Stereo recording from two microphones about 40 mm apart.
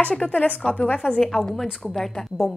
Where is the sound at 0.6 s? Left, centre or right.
Left.